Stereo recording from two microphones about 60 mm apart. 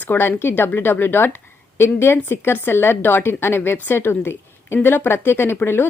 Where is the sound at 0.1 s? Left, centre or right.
Left.